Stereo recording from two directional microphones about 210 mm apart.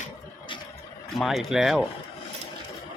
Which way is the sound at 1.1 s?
Centre (ahead or behind).